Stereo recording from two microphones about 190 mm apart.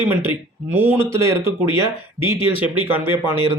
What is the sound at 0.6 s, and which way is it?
Speech, 10° right (ahead or behind).